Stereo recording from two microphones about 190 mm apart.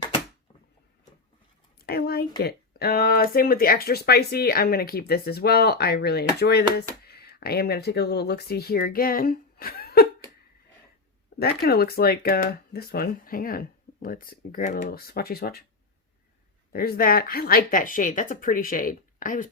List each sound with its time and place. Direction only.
1.9 s speech: 55° left (ahead or behind)
11.3 s speech: 55° left (ahead or behind)
16.7 s speech: 50° left (ahead or behind)